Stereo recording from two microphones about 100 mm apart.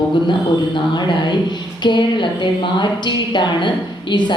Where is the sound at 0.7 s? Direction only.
50° left (ahead or behind).